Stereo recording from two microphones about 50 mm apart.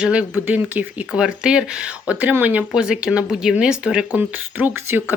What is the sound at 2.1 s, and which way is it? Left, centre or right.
Speech, right.